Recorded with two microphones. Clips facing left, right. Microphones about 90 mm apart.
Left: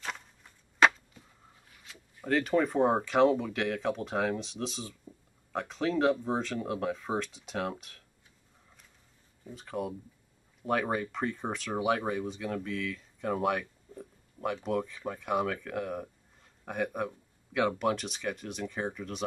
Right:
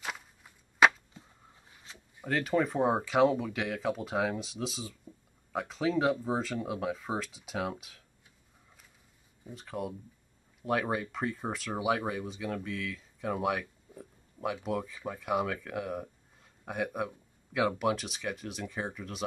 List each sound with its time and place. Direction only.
0.0 s a sound: 5° right (ahead or behind)
2.2 s speech: centre (ahead or behind)
9.5 s speech: centre (ahead or behind)